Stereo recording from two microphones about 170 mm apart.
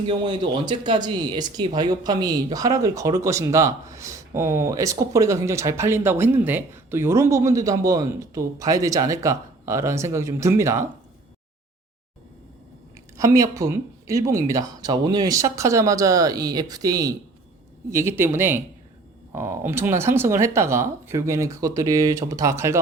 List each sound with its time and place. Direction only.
0.0 s speech: 25° right (ahead or behind)
13.1 s speech: 20° right (ahead or behind)